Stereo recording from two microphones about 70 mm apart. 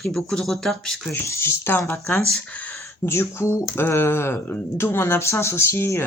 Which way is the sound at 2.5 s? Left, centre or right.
Left.